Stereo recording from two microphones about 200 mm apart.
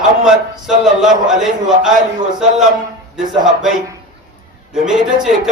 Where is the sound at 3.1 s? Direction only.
Centre (ahead or behind).